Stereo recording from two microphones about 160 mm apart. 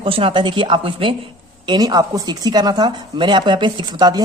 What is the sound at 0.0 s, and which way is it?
A woman's voice, 35° right (ahead or behind).